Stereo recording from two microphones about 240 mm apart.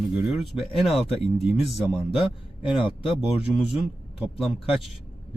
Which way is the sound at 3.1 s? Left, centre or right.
Centre.